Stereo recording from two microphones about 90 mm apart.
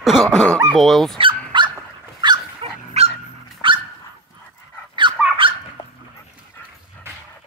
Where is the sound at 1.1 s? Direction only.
65° right (ahead or behind).